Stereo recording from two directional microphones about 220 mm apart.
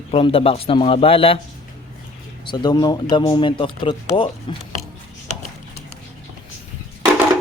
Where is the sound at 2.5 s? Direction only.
20° left (ahead or behind).